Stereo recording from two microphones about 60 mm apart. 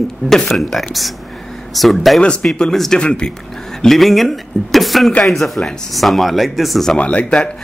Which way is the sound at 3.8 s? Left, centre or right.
Centre.